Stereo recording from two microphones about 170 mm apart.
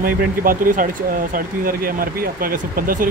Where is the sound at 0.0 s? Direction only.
55° right (ahead or behind).